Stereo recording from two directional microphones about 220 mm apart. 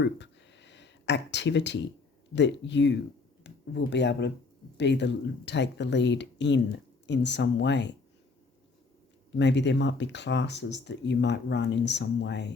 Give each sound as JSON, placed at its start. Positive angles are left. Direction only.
{"t": 0.0, "sound": "a sound", "side_deg": 50}
{"t": 2.3, "sound": "speech", "side_deg": 55}
{"t": 9.4, "sound": "speech", "side_deg": 50}